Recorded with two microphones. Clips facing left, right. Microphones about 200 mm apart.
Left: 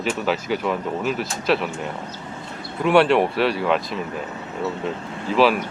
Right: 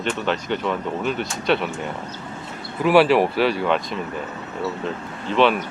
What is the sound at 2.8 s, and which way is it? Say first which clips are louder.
Speech: right 1 dB; 5° right (ahead or behind).